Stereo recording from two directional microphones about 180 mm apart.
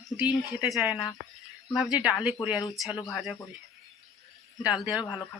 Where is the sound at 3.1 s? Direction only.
Centre (ahead or behind).